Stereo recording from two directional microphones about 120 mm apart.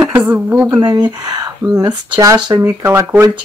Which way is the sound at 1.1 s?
30° right (ahead or behind).